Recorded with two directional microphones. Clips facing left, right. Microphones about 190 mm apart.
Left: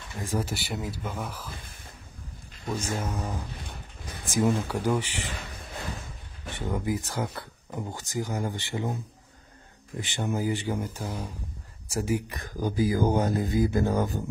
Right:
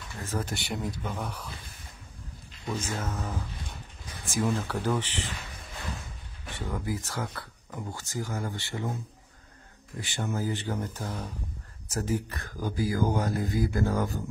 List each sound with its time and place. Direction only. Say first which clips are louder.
0.1 s speech: left 3 dB; 15° left (ahead or behind)
3.0 s speech: left 2 dB; 15° left (ahead or behind)
6.5 s speech: left 4 dB; 20° left (ahead or behind)